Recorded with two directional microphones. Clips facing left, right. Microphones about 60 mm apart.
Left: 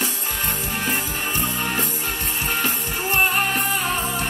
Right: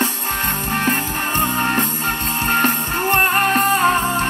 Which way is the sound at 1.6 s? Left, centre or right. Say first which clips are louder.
Right 6 dB; right.